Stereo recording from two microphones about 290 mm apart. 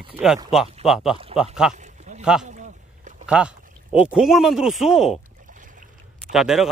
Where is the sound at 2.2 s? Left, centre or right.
Centre.